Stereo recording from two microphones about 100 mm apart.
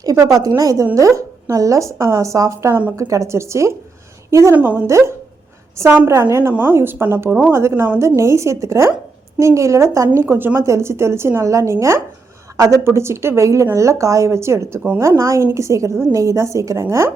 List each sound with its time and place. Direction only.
0.0 s a woman's voice: 35° right (ahead or behind)
4.5 s a woman's voice: 15° right (ahead or behind)
4.9 s a woman's voice: 30° right (ahead or behind)